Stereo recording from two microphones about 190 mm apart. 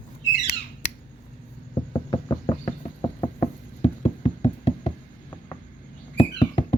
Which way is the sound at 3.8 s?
30° left (ahead or behind).